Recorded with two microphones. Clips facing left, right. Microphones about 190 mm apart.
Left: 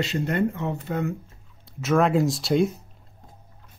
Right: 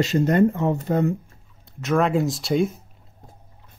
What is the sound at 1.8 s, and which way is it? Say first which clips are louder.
Speech: even; centre (ahead or behind).